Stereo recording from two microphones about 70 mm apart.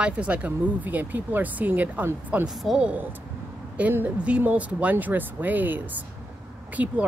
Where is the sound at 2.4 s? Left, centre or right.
Centre.